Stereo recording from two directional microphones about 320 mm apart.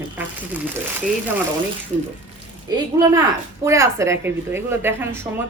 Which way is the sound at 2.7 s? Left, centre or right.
Centre.